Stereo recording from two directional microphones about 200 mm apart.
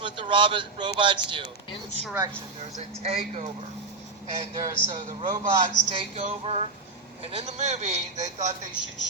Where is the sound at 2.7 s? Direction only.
30° right (ahead or behind).